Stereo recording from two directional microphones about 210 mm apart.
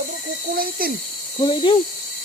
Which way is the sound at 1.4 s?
25° left (ahead or behind).